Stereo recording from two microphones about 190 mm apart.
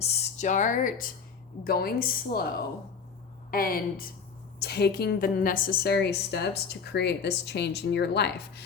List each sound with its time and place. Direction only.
0.0 s speech: 35° left (ahead or behind); by 8.6 s 60° left (ahead or behind)